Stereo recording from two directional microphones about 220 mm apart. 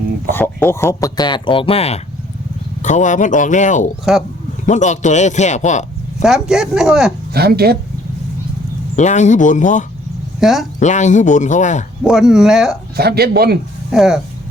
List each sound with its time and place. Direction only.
0.3 s speech: 10° left (ahead or behind); by 6.2 s 30° left (ahead or behind)
6.2 s speech: centre (ahead or behind)
7.3 s speech: 45° right (ahead or behind)
9.0 s speech: 35° left (ahead or behind)
10.4 s speech: centre (ahead or behind)
10.8 s speech: 35° left (ahead or behind)
12.0 s speech: 5° right (ahead or behind)
13.0 s speech: 45° right (ahead or behind)
13.9 s speech: centre (ahead or behind)